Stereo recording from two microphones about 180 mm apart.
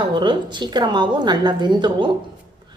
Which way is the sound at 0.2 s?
25° right (ahead or behind).